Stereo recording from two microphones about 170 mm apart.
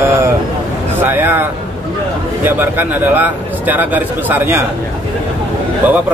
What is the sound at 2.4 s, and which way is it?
A man's voice, 10° right (ahead or behind).